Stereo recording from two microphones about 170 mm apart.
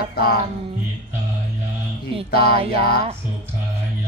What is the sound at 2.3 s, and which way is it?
Music, 65° left (ahead or behind).